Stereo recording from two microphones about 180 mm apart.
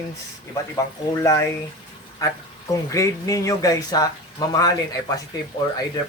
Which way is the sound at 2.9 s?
20° left (ahead or behind).